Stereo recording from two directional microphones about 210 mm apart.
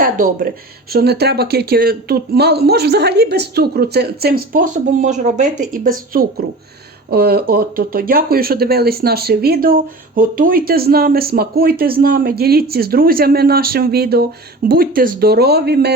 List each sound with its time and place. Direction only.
0.0 s speech: 40° right (ahead or behind)